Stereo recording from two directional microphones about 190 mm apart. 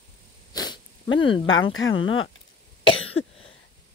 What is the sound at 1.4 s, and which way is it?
Speech, 90° left.